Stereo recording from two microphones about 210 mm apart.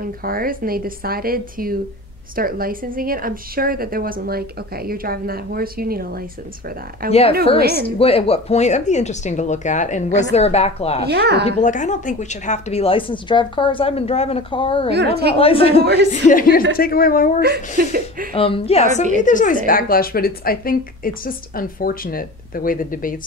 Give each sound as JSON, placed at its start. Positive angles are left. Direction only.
{"t": 0.0, "sound": "a woman's voice", "side_deg": -45}
{"t": 7.1, "sound": "speech", "side_deg": 30}
{"t": 11.1, "sound": "a woman's voice", "side_deg": -50}
{"t": 11.4, "sound": "speech", "side_deg": 35}
{"t": 14.9, "sound": "a woman's voice", "side_deg": -50}
{"t": 15.3, "sound": "speech", "side_deg": 25}
{"t": 15.8, "sound": "a woman's voice", "side_deg": -50}
{"t": 16.1, "sound": "a woman's voice", "side_deg": 40}
{"t": 17.4, "sound": "a woman's voice", "side_deg": -50}
{"t": 18.3, "sound": "a woman's voice", "side_deg": 25}